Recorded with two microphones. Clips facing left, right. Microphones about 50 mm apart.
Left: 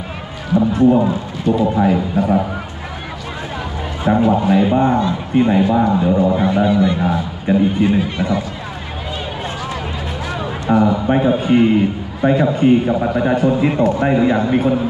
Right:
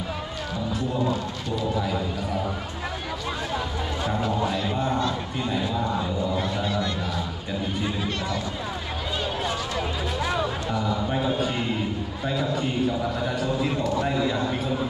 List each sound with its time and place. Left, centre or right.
0.6 s a man's voice: left
1.4 s a man's voice: left
4.0 s a man's voice: left
6.4 s a man's voice: left
10.7 s a man's voice: left